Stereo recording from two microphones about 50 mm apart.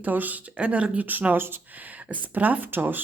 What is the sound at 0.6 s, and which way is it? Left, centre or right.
Speech, right.